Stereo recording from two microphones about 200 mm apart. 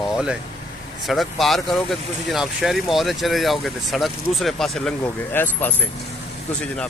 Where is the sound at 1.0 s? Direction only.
Centre (ahead or behind).